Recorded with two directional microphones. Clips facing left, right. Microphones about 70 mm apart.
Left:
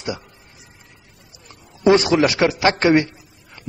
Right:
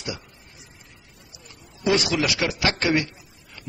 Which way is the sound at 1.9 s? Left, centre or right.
Left.